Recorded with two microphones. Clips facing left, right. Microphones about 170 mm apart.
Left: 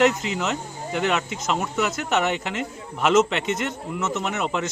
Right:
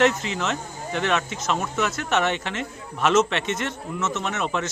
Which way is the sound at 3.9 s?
15° left (ahead or behind).